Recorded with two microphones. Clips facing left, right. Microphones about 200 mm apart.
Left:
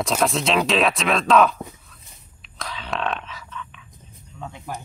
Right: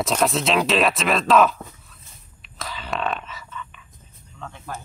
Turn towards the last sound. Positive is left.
turn(degrees=15)  # may be behind; listen again after turning